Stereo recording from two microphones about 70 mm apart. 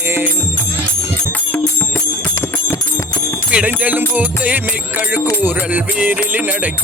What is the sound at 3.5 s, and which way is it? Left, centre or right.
Music, centre.